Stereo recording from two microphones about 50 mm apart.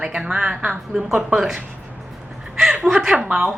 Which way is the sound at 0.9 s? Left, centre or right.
Centre.